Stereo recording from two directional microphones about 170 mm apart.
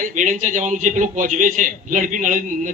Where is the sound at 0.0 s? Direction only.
50° right (ahead or behind).